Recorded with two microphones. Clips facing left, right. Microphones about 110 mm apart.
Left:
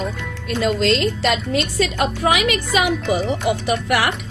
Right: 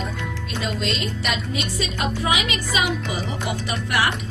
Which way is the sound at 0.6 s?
75° left (ahead or behind).